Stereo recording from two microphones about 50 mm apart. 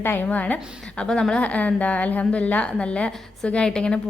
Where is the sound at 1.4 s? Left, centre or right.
Left.